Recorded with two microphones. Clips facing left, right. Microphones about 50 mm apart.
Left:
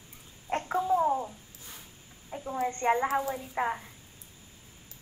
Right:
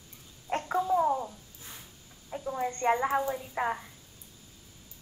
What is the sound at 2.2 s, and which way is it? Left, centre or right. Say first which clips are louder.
A woman's voice: left 1 dB; centre.